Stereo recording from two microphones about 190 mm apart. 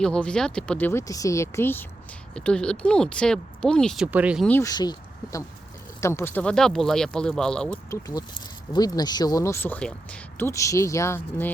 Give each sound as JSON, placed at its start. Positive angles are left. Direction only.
{"t": 0.0, "sound": "speech", "side_deg": 5}
{"t": 4.4, "sound": "speech", "side_deg": 15}
{"t": 7.9, "sound": "speech", "side_deg": 15}